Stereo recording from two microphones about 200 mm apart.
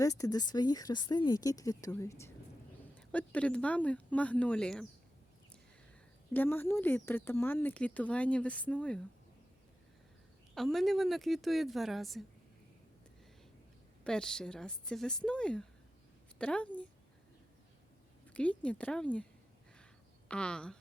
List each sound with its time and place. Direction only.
0.0 s speech: 15° left (ahead or behind)
6.3 s speech: 10° left (ahead or behind)
10.5 s speech: centre (ahead or behind)
14.0 s speech: 5° left (ahead or behind)
18.3 s speech: 5° left (ahead or behind)
19.8 s a sound: 5° left (ahead or behind)